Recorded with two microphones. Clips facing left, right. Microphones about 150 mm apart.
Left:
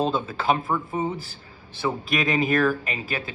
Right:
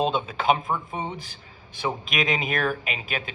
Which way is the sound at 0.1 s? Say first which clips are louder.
Even; 15° right (ahead or behind).